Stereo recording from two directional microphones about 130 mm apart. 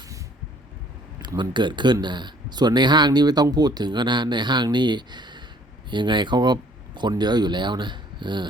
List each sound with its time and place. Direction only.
1.4 s speech: 35° right (ahead or behind)